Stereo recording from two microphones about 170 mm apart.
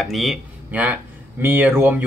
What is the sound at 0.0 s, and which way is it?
Speech, centre (ahead or behind).